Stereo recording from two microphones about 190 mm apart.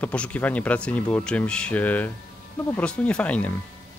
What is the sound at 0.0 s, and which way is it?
A man's voice, 5° left (ahead or behind).